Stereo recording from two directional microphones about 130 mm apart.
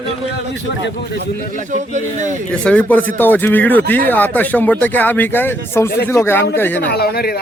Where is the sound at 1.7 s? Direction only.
65° right (ahead or behind).